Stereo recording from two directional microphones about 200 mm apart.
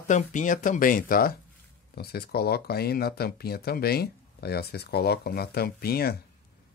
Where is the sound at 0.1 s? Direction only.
40° left (ahead or behind).